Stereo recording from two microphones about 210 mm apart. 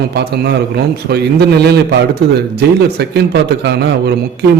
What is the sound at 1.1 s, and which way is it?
A man's voice, 50° right (ahead or behind).